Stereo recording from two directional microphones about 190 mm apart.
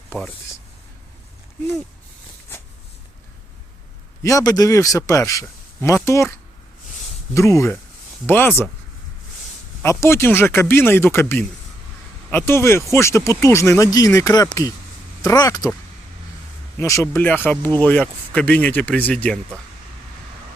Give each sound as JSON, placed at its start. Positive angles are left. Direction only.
{"t": 4.2, "sound": "a man's voice", "side_deg": 15}
{"t": 7.3, "sound": "a man's voice", "side_deg": 15}
{"t": 9.8, "sound": "a man's voice", "side_deg": 15}
{"t": 16.7, "sound": "a man's voice", "side_deg": 15}